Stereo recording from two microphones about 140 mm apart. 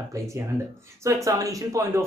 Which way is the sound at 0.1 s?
25° right (ahead or behind).